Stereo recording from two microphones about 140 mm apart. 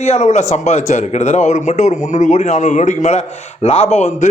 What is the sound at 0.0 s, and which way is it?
A man's voice, 55° left (ahead or behind).